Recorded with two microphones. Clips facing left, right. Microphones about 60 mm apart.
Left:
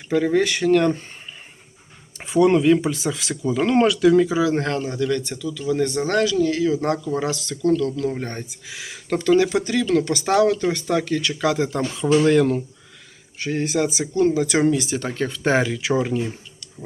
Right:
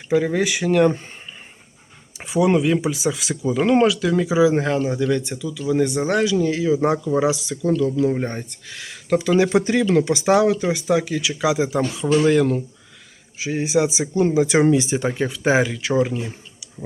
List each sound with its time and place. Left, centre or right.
0.1 s speech: centre
2.1 s speech: centre
4.9 s speech: centre
8.4 s speech: centre